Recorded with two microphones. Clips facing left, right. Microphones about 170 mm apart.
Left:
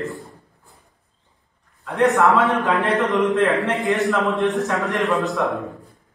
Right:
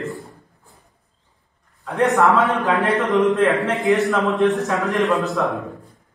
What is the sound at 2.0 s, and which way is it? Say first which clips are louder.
A man's voice: even; centre (ahead or behind).